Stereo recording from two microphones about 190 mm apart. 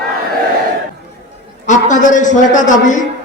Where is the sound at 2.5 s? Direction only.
40° left (ahead or behind).